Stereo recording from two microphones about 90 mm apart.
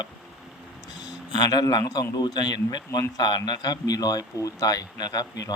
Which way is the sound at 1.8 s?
35° left (ahead or behind).